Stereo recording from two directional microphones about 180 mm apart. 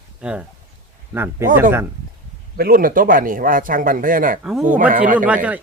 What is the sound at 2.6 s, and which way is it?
Speech, 55° right (ahead or behind).